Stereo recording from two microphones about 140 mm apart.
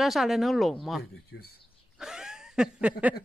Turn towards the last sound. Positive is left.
turn(degrees=-10)  # may be behind; listen again after turning